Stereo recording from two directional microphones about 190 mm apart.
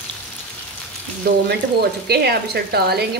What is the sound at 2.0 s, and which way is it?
Speech, 55° right (ahead or behind).